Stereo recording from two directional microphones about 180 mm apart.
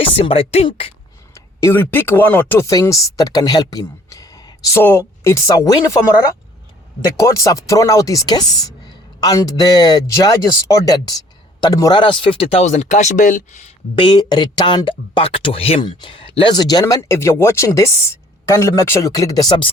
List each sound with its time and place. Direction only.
0.2 s speech: 30° left (ahead or behind)
1.3 s speech: 15° left (ahead or behind)
7.0 s speech: 15° left (ahead or behind); by 13.6 s 45° left (ahead or behind)
14.0 s speech: 25° left (ahead or behind)